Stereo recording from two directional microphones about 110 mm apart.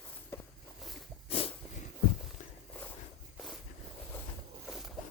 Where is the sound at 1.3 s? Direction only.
60° left (ahead or behind).